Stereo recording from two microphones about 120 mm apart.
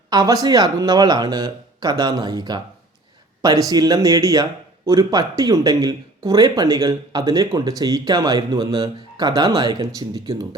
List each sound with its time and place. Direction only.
0.1 s speech: 30° right (ahead or behind)